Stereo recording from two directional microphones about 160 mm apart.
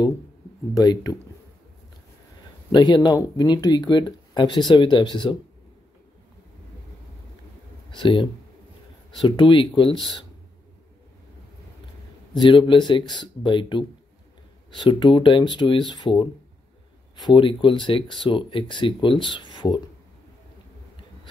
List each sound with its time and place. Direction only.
0.7 s speech: 20° left (ahead or behind)
2.7 s speech: 25° left (ahead or behind)
7.9 s speech: 30° left (ahead or behind)
12.4 s speech: 30° left (ahead or behind)